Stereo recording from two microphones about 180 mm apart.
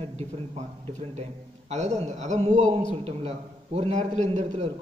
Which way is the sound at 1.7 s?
40° right (ahead or behind).